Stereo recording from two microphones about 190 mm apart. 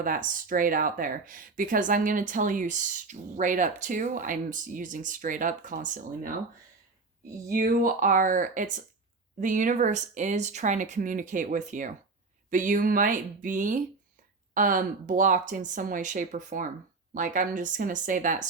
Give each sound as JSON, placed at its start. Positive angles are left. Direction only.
{"t": 0.0, "sound": "speech", "side_deg": -45}
{"t": 7.5, "sound": "speech", "side_deg": -45}